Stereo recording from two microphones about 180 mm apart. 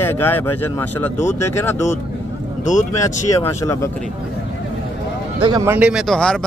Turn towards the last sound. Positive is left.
turn(degrees=5)  # may be behind; listen again after turning